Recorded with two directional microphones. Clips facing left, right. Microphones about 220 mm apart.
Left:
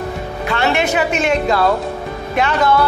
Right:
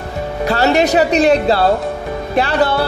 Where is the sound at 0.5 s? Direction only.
40° right (ahead or behind).